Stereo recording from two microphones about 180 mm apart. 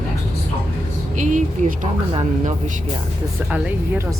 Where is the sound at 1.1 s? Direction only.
45° right (ahead or behind).